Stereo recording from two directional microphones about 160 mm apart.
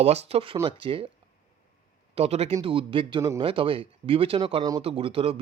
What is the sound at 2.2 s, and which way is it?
Speech, 40° right (ahead or behind).